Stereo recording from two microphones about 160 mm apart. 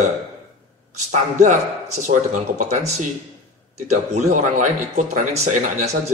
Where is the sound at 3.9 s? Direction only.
50° right (ahead or behind).